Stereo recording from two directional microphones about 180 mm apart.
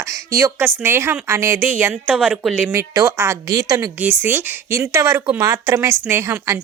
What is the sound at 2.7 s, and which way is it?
A woman's voice, 15° right (ahead or behind).